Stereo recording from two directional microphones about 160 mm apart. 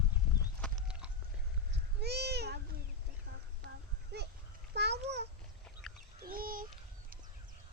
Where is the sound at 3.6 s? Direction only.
90° right.